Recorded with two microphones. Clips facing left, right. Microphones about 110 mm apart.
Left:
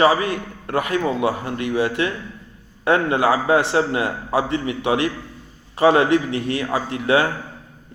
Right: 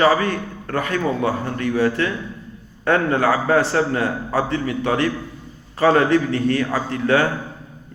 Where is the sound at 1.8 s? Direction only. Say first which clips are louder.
Right 2 dB; 25° left (ahead or behind).